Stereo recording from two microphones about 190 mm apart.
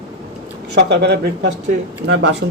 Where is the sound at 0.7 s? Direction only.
65° right (ahead or behind).